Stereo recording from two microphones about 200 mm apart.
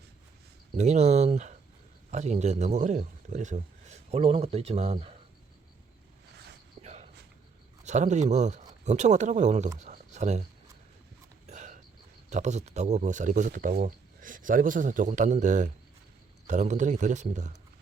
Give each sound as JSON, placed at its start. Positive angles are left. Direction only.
{"t": 0.8, "sound": "speech", "side_deg": -35}
{"t": 6.8, "sound": "cricket", "side_deg": -35}
{"t": 7.9, "sound": "speech", "side_deg": -35}
{"t": 9.7, "sound": "a sound", "side_deg": -35}
{"t": 11.4, "sound": "a sound", "side_deg": -35}
{"t": 12.3, "sound": "speech", "side_deg": -35}